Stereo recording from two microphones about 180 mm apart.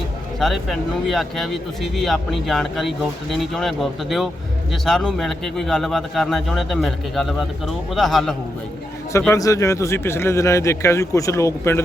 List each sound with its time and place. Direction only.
0.3 s speech: centre (ahead or behind)
9.3 s speech: 20° left (ahead or behind)